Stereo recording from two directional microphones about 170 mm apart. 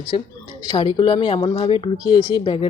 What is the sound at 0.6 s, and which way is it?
Speech, 25° left (ahead or behind).